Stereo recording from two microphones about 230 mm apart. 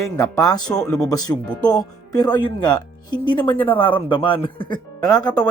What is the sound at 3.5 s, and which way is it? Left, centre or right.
Speech, centre.